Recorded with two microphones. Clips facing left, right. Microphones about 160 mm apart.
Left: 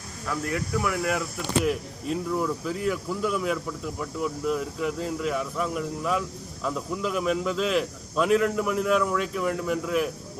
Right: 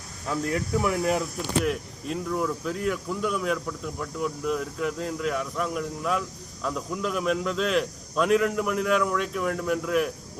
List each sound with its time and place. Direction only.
0.8 s speech: 25° right (ahead or behind)
1.6 s speech: centre (ahead or behind)